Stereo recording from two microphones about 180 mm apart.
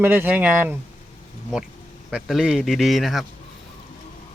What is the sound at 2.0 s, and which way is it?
A man's voice, centre (ahead or behind).